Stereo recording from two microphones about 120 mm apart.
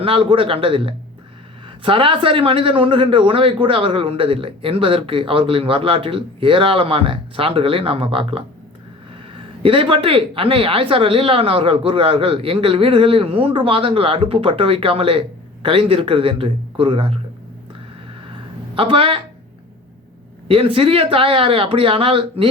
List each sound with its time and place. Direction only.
0.0 s speech: 50° right (ahead or behind)
9.6 s speech: 50° right (ahead or behind)
18.7 s speech: 45° right (ahead or behind)
20.5 s speech: 50° right (ahead or behind)